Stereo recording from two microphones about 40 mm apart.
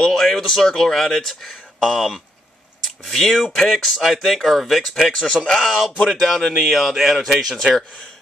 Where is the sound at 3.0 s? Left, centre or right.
Centre.